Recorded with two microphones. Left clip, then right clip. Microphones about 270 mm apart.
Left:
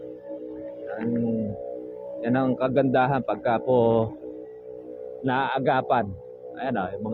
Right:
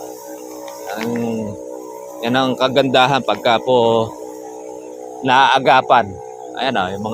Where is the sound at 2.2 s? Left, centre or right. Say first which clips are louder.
Right 8 dB; centre.